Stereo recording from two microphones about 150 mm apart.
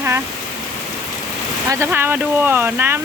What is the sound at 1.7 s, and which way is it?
Speech, 15° right (ahead or behind).